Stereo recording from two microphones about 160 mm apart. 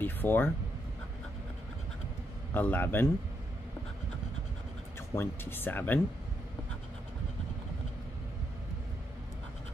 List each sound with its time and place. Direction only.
0.0 s a sound: 10° left (ahead or behind)
2.5 s speech: 10° left (ahead or behind)
5.1 s speech: 15° left (ahead or behind)